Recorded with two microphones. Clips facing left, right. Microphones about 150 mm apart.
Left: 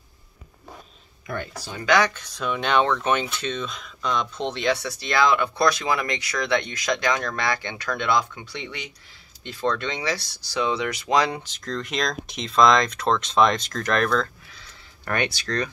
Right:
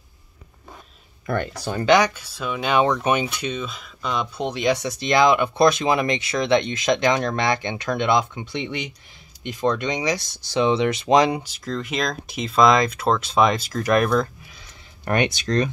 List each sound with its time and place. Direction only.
1.2 s speech: 65° right (ahead or behind)
1.9 s speech: 15° right (ahead or behind)